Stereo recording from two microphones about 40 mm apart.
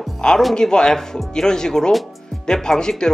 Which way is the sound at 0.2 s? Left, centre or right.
Centre.